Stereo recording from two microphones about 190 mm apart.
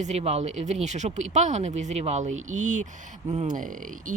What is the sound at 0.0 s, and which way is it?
Speech, 35° right (ahead or behind).